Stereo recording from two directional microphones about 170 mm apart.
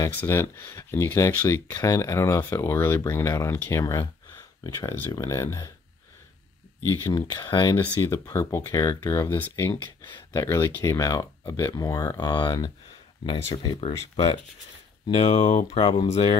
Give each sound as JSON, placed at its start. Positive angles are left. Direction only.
{"t": 0.2, "sound": "speech", "side_deg": 15}
{"t": 4.7, "sound": "speech", "side_deg": 15}
{"t": 7.1, "sound": "speech", "side_deg": 25}